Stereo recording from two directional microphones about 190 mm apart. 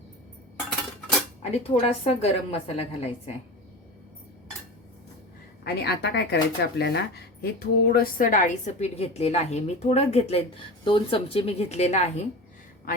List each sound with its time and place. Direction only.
1.4 s a woman's voice: 30° left (ahead or behind)
5.6 s a woman's voice: 60° left (ahead or behind); by 12.2 s 35° left (ahead or behind)